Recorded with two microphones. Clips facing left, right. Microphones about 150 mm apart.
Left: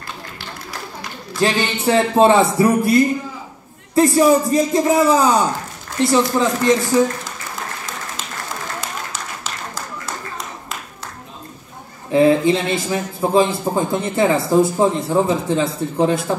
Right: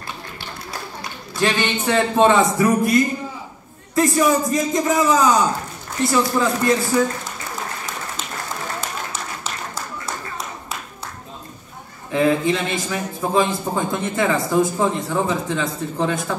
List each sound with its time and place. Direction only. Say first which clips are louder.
1.4 s speech: left 2 dB; 35° left (ahead or behind)
12.1 s speech: left 5 dB; 30° left (ahead or behind)